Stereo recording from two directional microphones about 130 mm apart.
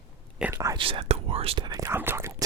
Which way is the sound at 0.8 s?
45° right (ahead or behind).